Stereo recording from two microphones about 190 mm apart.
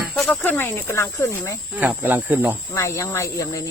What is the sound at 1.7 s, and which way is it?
Speech, 10° right (ahead or behind).